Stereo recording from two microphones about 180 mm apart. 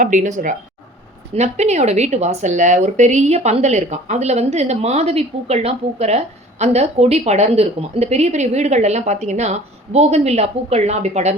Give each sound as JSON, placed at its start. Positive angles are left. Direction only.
{"t": 0.0, "sound": "speech", "side_deg": -45}